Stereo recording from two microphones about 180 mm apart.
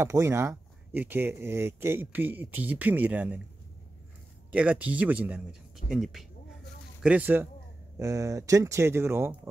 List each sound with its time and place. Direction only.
0.0 s speech: 15° right (ahead or behind)
4.5 s speech: 5° right (ahead or behind)